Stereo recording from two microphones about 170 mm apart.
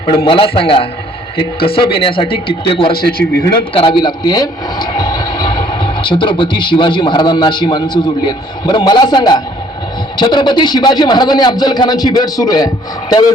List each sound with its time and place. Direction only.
0.3 s speech: 30° left (ahead or behind)
2.9 s speech: 60° left (ahead or behind)
3.8 s a man's voice: 30° left (ahead or behind)